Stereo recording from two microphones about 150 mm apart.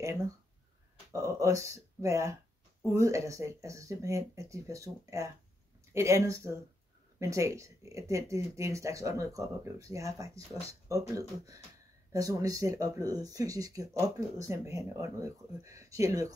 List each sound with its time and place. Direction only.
0.0 s speech: 20° right (ahead or behind)